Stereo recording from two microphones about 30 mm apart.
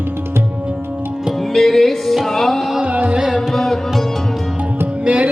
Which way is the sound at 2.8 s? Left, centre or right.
Right.